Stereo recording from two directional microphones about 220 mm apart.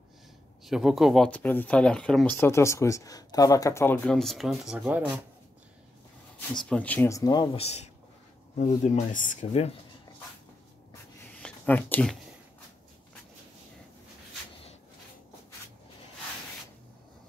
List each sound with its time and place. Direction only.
0.7 s speech: centre (ahead or behind)
6.7 s speech: 5° left (ahead or behind); by 9.8 s 30° left (ahead or behind)
11.3 s a sound: 5° left (ahead or behind)